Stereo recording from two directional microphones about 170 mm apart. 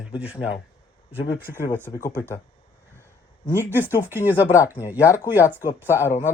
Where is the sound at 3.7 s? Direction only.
10° right (ahead or behind).